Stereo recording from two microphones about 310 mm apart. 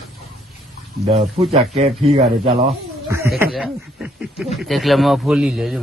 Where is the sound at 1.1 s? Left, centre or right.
Centre.